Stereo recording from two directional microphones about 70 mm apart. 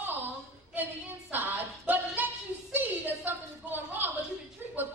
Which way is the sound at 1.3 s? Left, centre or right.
Right.